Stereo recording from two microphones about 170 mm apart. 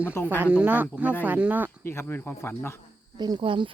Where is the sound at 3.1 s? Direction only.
25° right (ahead or behind).